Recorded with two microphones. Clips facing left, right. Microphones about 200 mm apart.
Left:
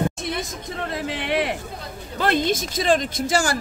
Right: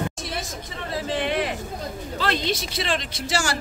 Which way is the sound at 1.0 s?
60° left (ahead or behind).